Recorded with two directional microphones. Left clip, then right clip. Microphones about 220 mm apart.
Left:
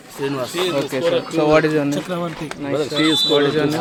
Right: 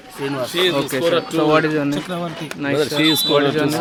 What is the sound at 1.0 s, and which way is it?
Speech, 50° right (ahead or behind).